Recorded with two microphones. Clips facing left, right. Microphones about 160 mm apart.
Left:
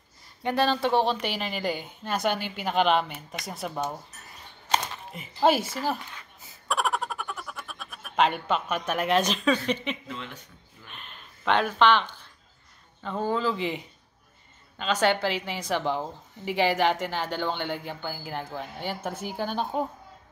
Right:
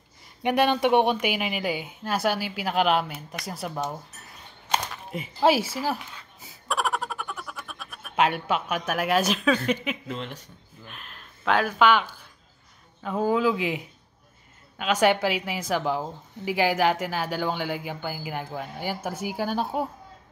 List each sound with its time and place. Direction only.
0.4 s a woman's voice: 15° right (ahead or behind); by 3.9 s centre (ahead or behind)
5.4 s a woman's voice: 5° right (ahead or behind)
6.7 s a sound: centre (ahead or behind)
9.7 s a woman's voice: 5° right (ahead or behind)
10.0 s speech: 40° right (ahead or behind)
10.9 s a woman's voice: centre (ahead or behind)